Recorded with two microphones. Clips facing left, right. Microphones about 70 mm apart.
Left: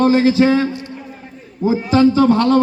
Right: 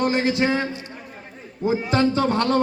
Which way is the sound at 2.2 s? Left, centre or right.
Right.